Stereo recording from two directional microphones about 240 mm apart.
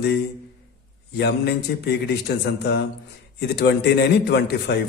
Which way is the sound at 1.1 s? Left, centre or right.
Left.